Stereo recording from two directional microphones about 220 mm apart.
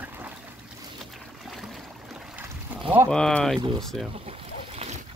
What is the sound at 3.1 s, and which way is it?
Speech, 5° left (ahead or behind).